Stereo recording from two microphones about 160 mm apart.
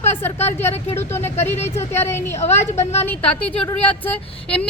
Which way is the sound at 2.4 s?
45° left (ahead or behind).